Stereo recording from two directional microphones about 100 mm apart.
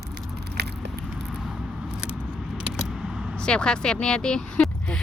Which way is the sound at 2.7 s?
5° right (ahead or behind).